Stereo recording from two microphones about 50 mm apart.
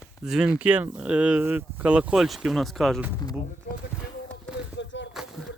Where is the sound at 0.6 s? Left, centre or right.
Right.